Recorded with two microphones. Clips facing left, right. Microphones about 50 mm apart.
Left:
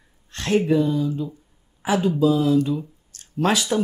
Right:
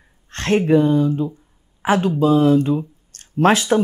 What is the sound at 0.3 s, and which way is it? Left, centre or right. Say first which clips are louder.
Speech: right 4 dB; right.